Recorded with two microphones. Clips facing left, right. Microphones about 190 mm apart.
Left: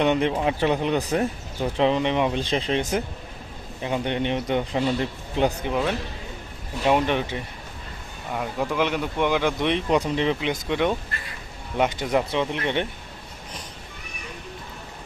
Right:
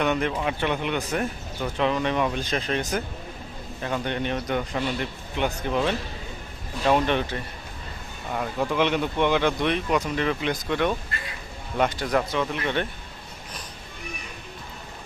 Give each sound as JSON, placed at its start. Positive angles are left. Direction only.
{"t": 0.0, "sound": "a man's voice", "side_deg": 25}
{"t": 5.6, "sound": "speech", "side_deg": 10}
{"t": 12.1, "sound": "a man's voice", "side_deg": 25}